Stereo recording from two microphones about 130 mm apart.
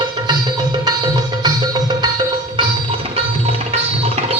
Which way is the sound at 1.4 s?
30° right (ahead or behind).